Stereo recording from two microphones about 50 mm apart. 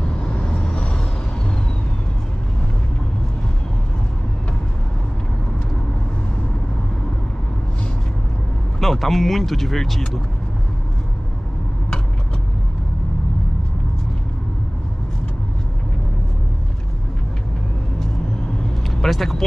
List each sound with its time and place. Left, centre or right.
0.2 s vehicle: centre
8.7 s speech: centre
18.9 s vehicle: centre